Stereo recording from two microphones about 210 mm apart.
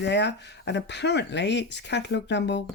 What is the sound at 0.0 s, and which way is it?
Speech, 55° left (ahead or behind).